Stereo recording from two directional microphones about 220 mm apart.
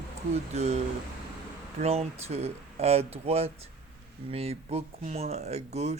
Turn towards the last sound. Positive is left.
turn(degrees=-30)  # may be behind; listen again after turning